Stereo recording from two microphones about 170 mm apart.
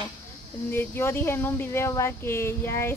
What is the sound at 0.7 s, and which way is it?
Speech, 15° left (ahead or behind).